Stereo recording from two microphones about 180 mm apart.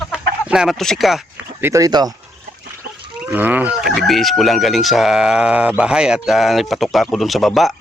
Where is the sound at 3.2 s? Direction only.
10° right (ahead or behind).